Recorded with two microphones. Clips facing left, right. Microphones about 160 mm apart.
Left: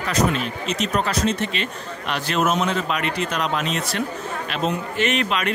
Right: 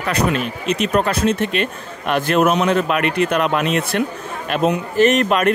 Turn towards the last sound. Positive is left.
turn(degrees=-50)  # may be behind; listen again after turning